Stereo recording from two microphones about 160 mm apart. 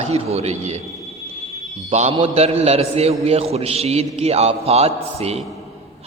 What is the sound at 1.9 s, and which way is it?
A man's voice, 45° right (ahead or behind).